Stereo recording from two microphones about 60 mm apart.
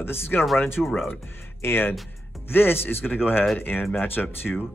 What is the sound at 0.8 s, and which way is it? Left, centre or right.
Speech, centre.